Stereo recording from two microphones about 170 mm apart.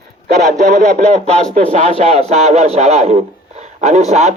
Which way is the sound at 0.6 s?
45° right (ahead or behind).